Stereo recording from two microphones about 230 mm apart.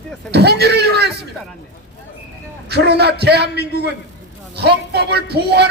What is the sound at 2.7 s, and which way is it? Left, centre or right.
Speech, right.